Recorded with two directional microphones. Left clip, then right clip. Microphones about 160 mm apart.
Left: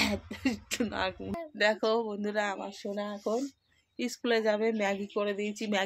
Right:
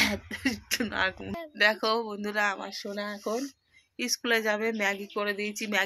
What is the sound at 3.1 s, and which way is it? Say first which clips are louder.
Speech: left 1 dB; centre (ahead or behind).